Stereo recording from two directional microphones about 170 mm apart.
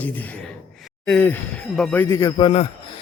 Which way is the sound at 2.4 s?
30° left (ahead or behind).